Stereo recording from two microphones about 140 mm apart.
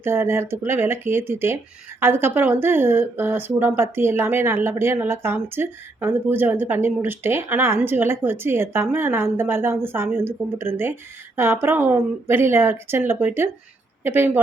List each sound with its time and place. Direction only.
0.0 s speech: 15° right (ahead or behind)